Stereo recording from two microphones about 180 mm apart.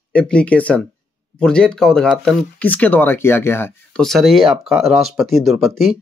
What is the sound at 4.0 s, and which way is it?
Speech, centre (ahead or behind).